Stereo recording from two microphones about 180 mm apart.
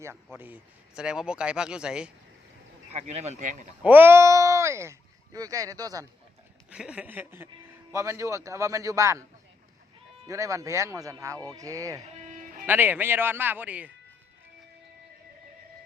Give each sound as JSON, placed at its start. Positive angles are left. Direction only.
{"t": 0.3, "sound": "speech", "side_deg": -10}
{"t": 2.9, "sound": "speech", "side_deg": -35}
{"t": 3.8, "sound": "speech", "side_deg": -10}
{"t": 6.7, "sound": "a man's voice", "side_deg": -5}
{"t": 10.2, "sound": "a man's voice", "side_deg": -15}
{"t": 12.1, "sound": "music", "side_deg": -40}
{"t": 12.6, "sound": "a man's voice", "side_deg": -10}